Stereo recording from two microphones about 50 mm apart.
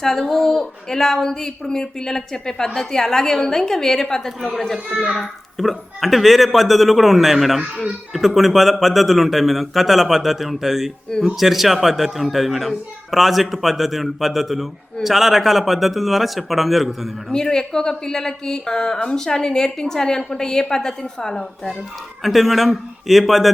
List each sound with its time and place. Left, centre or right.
0.0 s a woman's voice: centre
17.2 s a woman's voice: centre
22.2 s a child's voice: centre